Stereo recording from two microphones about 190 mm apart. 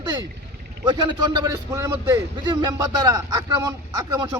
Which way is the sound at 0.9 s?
25° right (ahead or behind).